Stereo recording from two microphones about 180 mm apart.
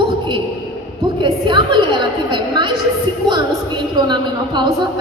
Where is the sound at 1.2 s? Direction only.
25° right (ahead or behind).